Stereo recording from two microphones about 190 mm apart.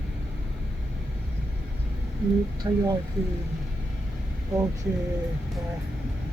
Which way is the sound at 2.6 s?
25° right (ahead or behind).